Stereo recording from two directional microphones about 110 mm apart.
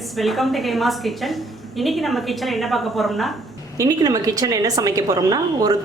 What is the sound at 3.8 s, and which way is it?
A woman's voice, 35° right (ahead or behind).